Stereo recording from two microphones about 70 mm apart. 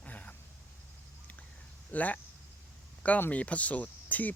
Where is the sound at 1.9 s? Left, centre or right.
Left.